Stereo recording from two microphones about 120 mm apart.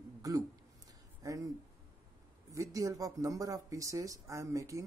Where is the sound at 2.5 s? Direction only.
25° right (ahead or behind).